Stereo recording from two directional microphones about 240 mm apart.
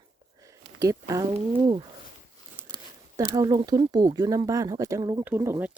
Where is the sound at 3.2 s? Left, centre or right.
Centre.